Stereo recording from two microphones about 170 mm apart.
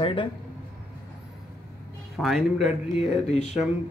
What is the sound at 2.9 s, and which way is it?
Speech, 40° left (ahead or behind).